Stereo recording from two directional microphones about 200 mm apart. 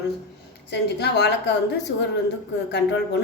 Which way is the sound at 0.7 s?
55° left (ahead or behind).